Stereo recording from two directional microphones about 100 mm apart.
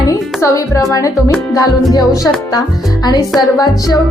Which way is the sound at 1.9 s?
35° left (ahead or behind).